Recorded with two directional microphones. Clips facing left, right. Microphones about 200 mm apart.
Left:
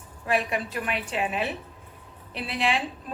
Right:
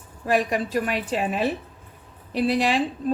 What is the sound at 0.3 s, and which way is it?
A woman's voice, 40° right (ahead or behind).